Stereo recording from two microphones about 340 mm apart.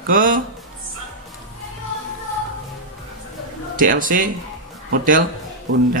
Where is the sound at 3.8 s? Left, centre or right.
Right.